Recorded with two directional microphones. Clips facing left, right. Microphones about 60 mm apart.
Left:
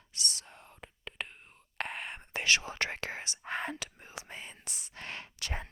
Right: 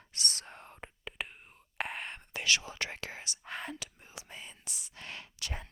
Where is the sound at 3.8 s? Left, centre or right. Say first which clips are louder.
Left 4 dB; left.